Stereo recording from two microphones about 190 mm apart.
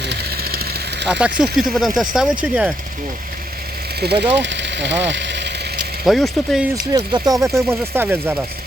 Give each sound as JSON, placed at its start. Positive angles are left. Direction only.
{"t": 0.0, "sound": "vehicle", "side_deg": -60}
{"t": 1.0, "sound": "speech", "side_deg": -5}
{"t": 4.0, "sound": "speech", "side_deg": -55}
{"t": 4.4, "sound": "speech", "side_deg": -70}
{"t": 6.1, "sound": "speech", "side_deg": 0}
{"t": 6.9, "sound": "speech", "side_deg": -20}